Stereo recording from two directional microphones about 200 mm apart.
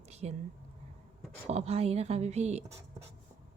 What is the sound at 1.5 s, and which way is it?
Speech, 30° right (ahead or behind).